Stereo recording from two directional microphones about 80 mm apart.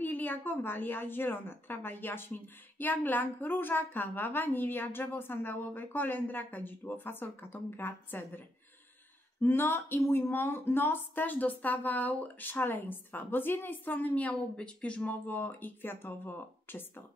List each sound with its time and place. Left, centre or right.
0.0 s a woman's voice: left
9.4 s a woman's voice: left